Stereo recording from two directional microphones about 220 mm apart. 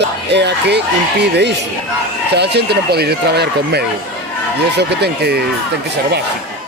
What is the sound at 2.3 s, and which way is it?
Speech, 50° right (ahead or behind).